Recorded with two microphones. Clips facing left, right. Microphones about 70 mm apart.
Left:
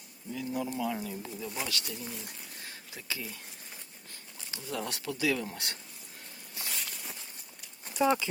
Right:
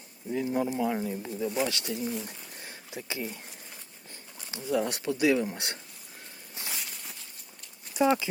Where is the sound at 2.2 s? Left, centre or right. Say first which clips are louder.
Right 2 dB; right.